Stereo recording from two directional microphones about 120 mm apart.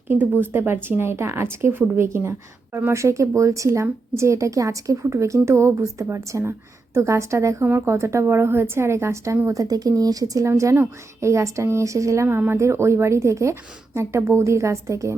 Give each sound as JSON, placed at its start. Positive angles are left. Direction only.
{"t": 0.4, "sound": "a woman's voice", "side_deg": -20}